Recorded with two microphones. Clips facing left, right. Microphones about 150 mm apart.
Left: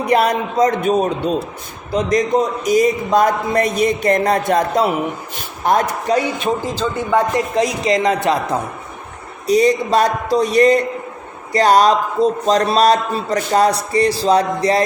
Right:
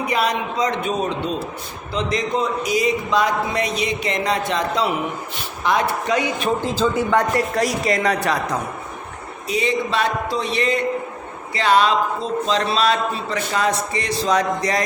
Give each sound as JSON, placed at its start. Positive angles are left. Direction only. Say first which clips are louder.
{"t": 0.1, "sound": "a man's voice", "louder": "left 8 dB", "side_deg": 55}
{"t": 6.8, "sound": "speech", "louder": "right 4 dB", "side_deg": -5}
{"t": 7.3, "sound": "speech", "louder": "left 2 dB", "side_deg": 20}
{"t": 9.5, "sound": "a man's voice", "louder": "left 8 dB", "side_deg": 40}